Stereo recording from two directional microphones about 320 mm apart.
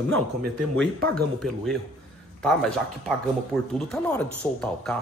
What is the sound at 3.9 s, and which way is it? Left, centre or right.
Speech, centre.